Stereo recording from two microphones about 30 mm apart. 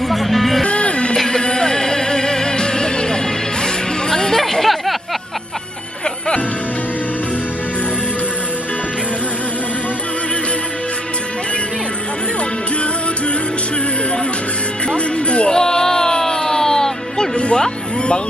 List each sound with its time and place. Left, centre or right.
0.1 s music: centre
0.6 s music: left
1.1 s music: centre
1.4 s music: left
4.1 s a sound: centre
14.8 s music: left
15.5 s music: left
17.3 s music: left